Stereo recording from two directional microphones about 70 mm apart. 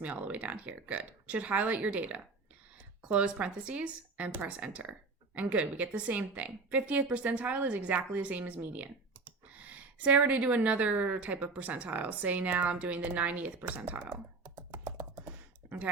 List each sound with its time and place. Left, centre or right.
0.0 s a woman's voice: right
14.7 s typing: right